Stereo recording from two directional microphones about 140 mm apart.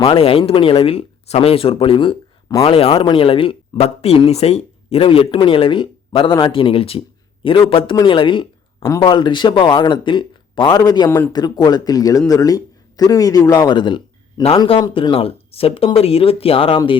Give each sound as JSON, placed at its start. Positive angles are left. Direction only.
{"t": 0.0, "sound": "speech", "side_deg": 40}
{"t": 8.8, "sound": "speech", "side_deg": 20}
{"t": 9.0, "sound": "speech", "side_deg": 35}